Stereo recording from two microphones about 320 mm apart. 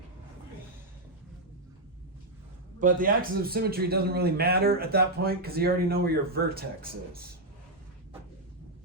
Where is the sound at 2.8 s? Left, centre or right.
Right.